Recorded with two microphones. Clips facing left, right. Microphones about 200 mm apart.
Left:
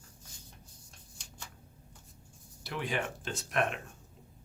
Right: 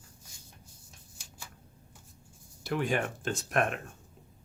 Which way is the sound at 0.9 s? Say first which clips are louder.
Even; 5° right (ahead or behind).